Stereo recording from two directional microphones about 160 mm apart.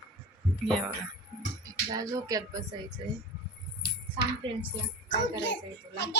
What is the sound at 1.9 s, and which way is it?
Speech, 20° right (ahead or behind).